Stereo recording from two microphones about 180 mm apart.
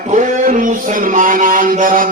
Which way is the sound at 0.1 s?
50° right (ahead or behind).